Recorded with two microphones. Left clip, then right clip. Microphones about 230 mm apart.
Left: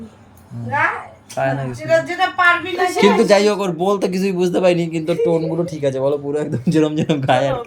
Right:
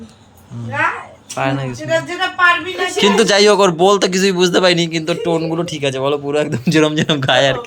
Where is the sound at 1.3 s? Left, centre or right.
Centre.